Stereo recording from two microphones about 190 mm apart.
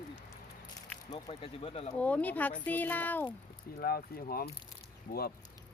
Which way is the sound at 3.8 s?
50° left (ahead or behind).